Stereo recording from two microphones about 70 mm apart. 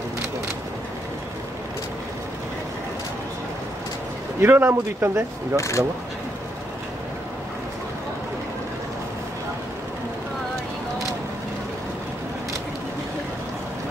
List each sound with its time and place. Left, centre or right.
4.4 s speech: right
5.6 s speech: left